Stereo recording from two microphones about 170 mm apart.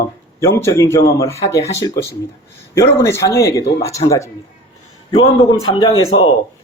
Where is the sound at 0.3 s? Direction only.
15° left (ahead or behind).